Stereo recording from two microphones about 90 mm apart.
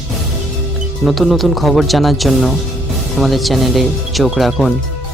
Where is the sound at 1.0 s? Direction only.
Centre (ahead or behind).